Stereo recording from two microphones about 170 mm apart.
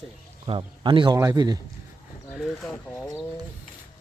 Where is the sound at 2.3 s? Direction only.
Centre (ahead or behind).